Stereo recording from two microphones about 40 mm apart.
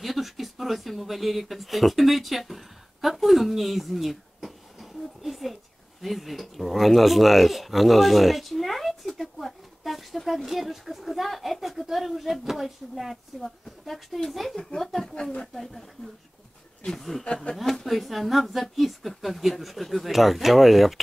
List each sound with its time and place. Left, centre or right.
0.0 s a woman's voice: centre
14.5 s speech: centre
14.8 s a woman's voice: centre
17.8 s a woman's voice: centre